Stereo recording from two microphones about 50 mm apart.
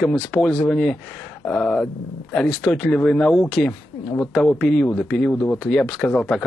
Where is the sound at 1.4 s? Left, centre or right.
Left.